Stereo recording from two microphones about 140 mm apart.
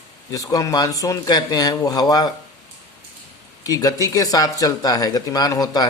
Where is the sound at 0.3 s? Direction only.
25° left (ahead or behind).